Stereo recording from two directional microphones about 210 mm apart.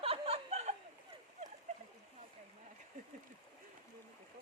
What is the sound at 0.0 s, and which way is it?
Chuckle, 25° right (ahead or behind).